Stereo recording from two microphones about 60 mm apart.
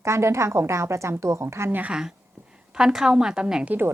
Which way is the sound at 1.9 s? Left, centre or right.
Centre.